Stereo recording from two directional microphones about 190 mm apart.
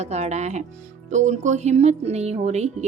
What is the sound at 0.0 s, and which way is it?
Speech, 35° right (ahead or behind).